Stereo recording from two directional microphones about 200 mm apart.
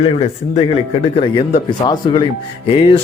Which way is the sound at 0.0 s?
30° left (ahead or behind).